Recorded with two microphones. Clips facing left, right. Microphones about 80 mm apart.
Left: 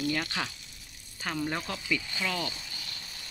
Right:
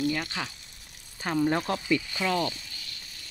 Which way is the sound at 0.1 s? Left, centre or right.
Centre.